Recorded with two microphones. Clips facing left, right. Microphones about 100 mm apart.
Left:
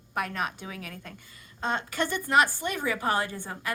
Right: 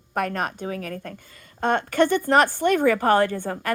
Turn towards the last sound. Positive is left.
turn(degrees=-55)  # may be behind; listen again after turning